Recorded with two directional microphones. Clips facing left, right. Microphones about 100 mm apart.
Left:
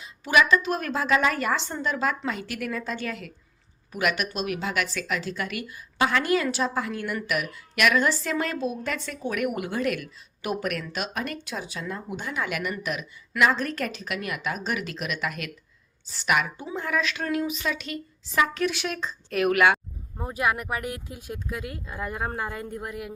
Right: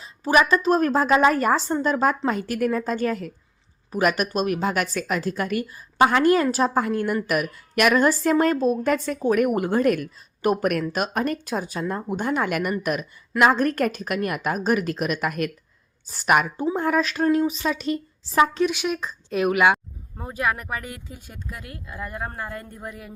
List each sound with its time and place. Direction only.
0.0 s a woman's voice: 40° right (ahead or behind)
18.6 s speech: 15° right (ahead or behind)
20.1 s speech: 5° left (ahead or behind)